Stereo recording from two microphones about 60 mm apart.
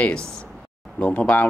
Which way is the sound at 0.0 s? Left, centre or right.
Centre.